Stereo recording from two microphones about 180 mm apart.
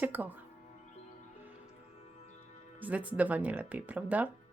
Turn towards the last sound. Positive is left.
turn(degrees=-10)  # may be behind; listen again after turning